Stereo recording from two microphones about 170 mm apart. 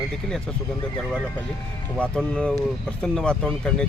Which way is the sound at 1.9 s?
5° left (ahead or behind).